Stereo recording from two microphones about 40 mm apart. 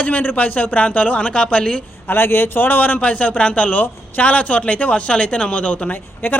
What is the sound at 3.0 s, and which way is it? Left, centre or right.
Speech, left.